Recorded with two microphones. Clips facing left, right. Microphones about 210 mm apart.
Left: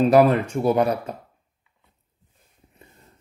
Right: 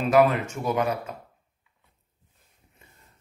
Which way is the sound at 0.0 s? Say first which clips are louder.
Left 4 dB; 35° left (ahead or behind).